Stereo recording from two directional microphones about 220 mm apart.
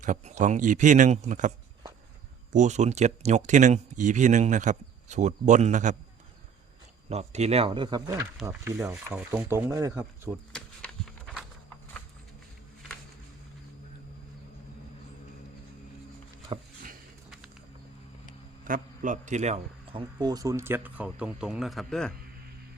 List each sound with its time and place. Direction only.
0.0 s speech: 35° right (ahead or behind)
7.1 s a man's voice: 30° right (ahead or behind); by 10.3 s 10° right (ahead or behind)
17.2 s a sound: centre (ahead or behind)
18.6 s a man's voice: 35° right (ahead or behind); by 22.1 s centre (ahead or behind)